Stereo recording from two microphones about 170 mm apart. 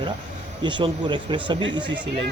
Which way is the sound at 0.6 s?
25° right (ahead or behind).